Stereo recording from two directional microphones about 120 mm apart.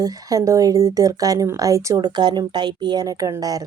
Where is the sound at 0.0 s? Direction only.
30° right (ahead or behind).